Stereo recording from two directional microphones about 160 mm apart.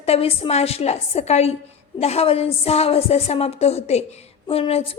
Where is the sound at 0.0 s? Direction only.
40° left (ahead or behind).